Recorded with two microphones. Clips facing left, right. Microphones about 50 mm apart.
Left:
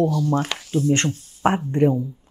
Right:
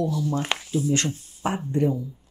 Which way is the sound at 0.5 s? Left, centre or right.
Right.